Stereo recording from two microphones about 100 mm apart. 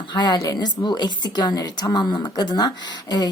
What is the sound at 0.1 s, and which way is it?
A woman's voice, 45° left (ahead or behind).